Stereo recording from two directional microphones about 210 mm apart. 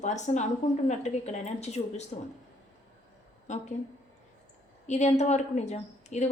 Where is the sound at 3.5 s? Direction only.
35° left (ahead or behind).